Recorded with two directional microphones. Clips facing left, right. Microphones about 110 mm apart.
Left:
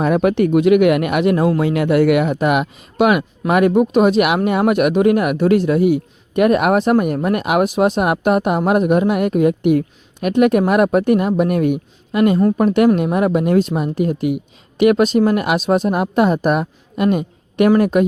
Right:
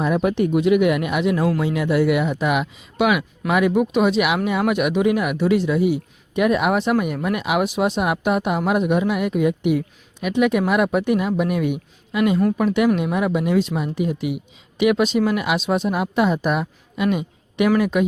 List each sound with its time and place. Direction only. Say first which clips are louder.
0.0 s speech: left 5 dB; 70° left (ahead or behind); by 18.0 s 45° left (ahead or behind)